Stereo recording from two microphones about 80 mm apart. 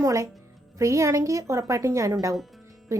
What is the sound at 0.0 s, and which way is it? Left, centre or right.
A woman's voice, right.